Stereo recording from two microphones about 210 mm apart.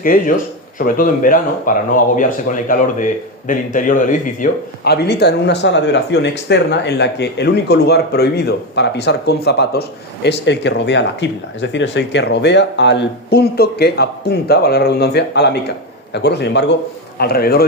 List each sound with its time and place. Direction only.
0.0 s a man's voice: 40° left (ahead or behind)